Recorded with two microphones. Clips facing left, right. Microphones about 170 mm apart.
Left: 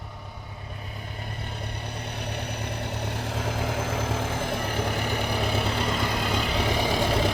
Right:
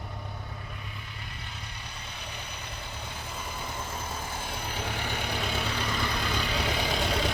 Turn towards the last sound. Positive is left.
turn(degrees=55)  # may be behind; listen again after turning